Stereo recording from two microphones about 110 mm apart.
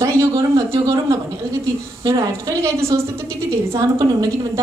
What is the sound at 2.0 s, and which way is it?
A woman's voice, 30° right (ahead or behind).